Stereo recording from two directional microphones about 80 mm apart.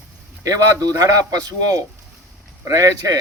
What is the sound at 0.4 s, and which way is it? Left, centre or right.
A man's voice, right.